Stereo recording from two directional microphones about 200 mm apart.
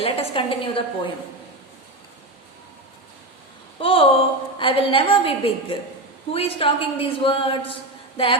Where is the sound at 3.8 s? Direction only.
25° left (ahead or behind).